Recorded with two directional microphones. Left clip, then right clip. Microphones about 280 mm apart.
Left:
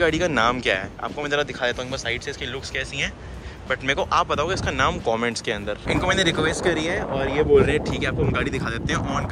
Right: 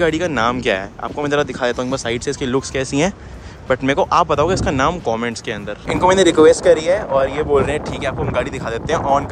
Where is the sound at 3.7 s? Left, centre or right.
Centre.